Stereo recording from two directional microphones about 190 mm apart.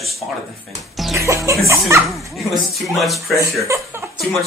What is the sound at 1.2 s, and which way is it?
Speech, 15° right (ahead or behind).